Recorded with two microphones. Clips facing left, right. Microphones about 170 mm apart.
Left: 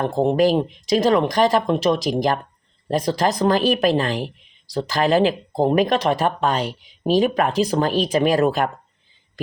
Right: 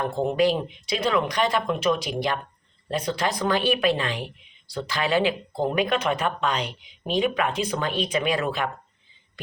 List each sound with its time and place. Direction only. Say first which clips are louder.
0.0 s speech: left 5 dB; 35° left (ahead or behind)